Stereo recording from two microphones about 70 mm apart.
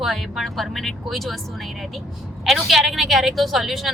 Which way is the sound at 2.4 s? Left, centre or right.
Centre.